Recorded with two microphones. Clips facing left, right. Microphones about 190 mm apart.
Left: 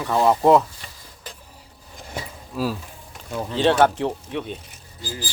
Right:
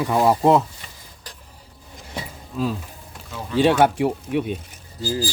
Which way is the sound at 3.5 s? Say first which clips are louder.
Right 1 dB; 10° right (ahead or behind).